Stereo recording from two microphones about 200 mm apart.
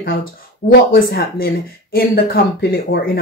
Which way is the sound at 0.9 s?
50° left (ahead or behind).